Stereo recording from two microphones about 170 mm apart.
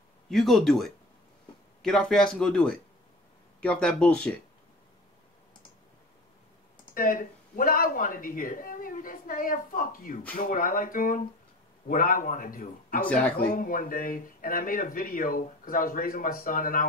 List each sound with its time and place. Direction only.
0.3 s speech: centre (ahead or behind)
6.9 s speech: 55° left (ahead or behind)